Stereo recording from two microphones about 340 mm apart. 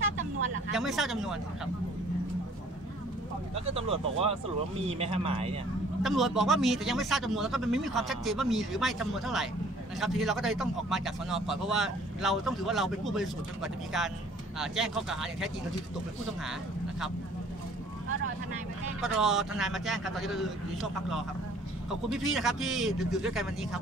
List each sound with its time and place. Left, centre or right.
0.7 s a man's voice: centre
3.5 s speech: centre
6.0 s a man's voice: centre
18.9 s a man's voice: centre
22.1 s a man's voice: centre